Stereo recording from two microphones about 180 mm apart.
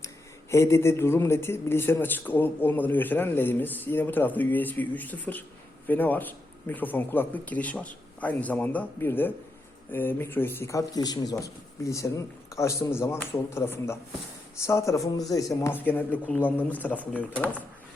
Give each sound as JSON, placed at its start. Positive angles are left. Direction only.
{"t": 0.5, "sound": "speech", "side_deg": 15}